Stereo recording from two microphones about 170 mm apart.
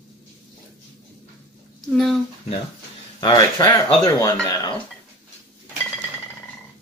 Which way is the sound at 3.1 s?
25° left (ahead or behind).